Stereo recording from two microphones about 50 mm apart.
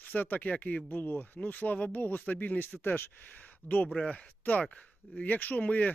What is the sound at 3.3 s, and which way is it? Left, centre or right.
Speech, left.